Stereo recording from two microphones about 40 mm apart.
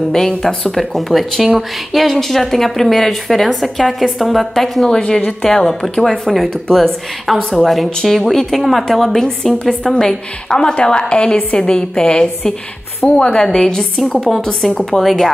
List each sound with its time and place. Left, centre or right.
0.7 s speech: centre
4.8 s a woman's voice: left
9.9 s a woman's voice: centre
13.4 s speech: centre